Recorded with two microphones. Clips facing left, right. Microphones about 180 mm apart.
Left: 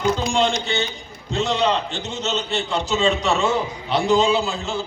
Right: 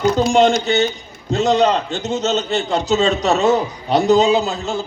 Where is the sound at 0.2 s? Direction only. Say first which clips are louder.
Right 7 dB; 40° right (ahead or behind).